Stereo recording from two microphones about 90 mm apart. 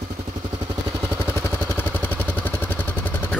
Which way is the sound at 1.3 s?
20° left (ahead or behind).